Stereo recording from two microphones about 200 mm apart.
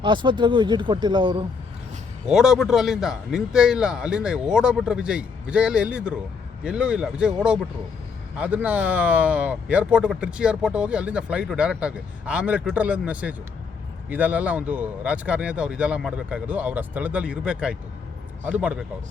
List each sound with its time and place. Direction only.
0.0 s speech: 25° right (ahead or behind)
2.2 s a man's voice: 5° right (ahead or behind)